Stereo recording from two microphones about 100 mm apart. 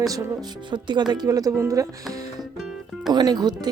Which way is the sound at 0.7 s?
50° right (ahead or behind).